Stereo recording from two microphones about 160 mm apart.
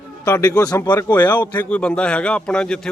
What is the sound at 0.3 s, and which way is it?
Speech, 20° left (ahead or behind).